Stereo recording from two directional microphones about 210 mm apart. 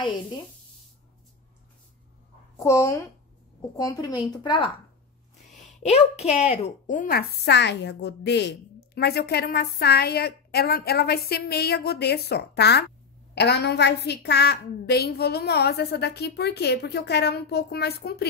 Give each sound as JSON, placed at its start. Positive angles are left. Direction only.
{"t": 2.6, "sound": "a woman's voice", "side_deg": 15}